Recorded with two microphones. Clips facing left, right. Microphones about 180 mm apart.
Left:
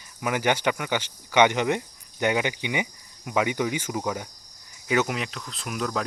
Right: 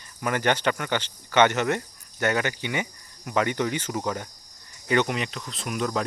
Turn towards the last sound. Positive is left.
turn(degrees=0)  # may be behind; listen again after turning